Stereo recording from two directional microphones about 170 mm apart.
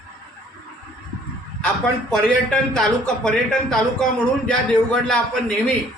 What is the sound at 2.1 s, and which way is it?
Speech, 5° left (ahead or behind).